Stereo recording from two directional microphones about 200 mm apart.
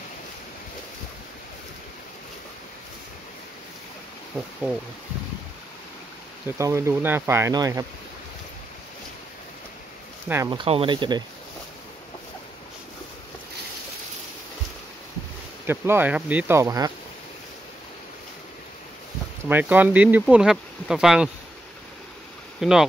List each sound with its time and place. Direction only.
6.4 s speech: 15° right (ahead or behind)
10.2 s speech: 15° right (ahead or behind)
15.6 s speech: 10° right (ahead or behind)
19.5 s speech: 10° right (ahead or behind)
22.6 s speech: centre (ahead or behind)